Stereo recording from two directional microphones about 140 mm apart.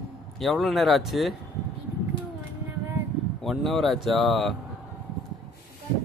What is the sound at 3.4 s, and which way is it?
Speech, centre (ahead or behind).